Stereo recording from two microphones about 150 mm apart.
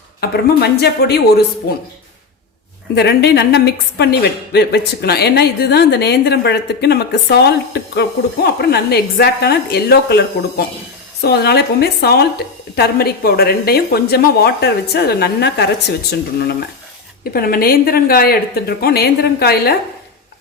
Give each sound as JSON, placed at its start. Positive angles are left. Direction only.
{"t": 0.2, "sound": "a woman's voice", "side_deg": 90}
{"t": 3.0, "sound": "a woman's voice", "side_deg": 90}
{"t": 17.3, "sound": "a woman's voice", "side_deg": 85}